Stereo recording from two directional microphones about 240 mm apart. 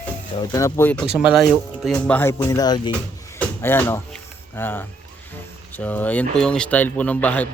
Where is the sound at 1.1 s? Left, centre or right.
Centre.